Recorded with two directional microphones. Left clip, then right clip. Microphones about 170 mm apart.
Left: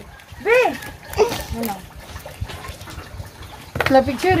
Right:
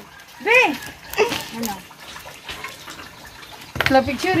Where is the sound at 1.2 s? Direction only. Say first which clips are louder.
Left 1 dB; centre (ahead or behind).